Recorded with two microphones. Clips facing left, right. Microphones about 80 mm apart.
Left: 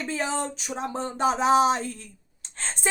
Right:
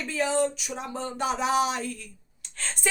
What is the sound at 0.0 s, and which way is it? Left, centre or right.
Speech, left.